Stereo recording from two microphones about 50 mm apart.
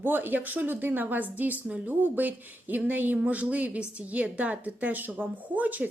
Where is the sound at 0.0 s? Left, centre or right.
Right.